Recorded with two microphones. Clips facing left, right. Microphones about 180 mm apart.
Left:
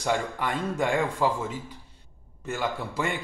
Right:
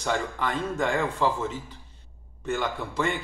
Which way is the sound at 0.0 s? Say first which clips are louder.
Left 1 dB; 10° left (ahead or behind).